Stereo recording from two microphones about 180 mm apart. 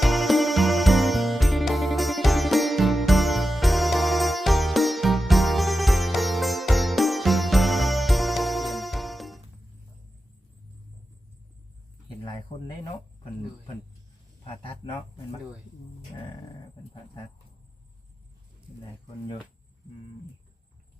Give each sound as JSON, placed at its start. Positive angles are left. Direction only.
{"t": 0.0, "sound": "music", "side_deg": 0}
{"t": 12.0, "sound": "a sound", "side_deg": 20}
{"t": 14.4, "sound": "speech", "side_deg": 30}